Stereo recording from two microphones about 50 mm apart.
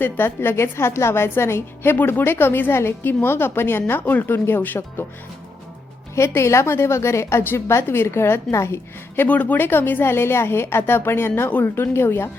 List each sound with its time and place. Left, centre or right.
0.0 s a woman's voice: left
6.1 s a woman's voice: left
9.2 s a woman's voice: left